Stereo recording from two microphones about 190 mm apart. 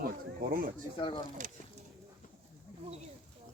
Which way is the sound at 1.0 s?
25° left (ahead or behind).